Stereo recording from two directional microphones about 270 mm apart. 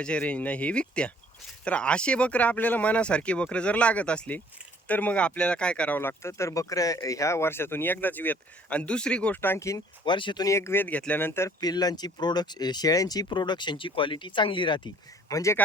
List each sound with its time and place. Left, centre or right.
0.0 s speech: centre